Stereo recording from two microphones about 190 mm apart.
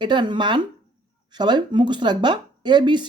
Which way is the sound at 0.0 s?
25° right (ahead or behind).